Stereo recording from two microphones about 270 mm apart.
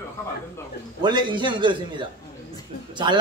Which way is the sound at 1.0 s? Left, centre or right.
Centre.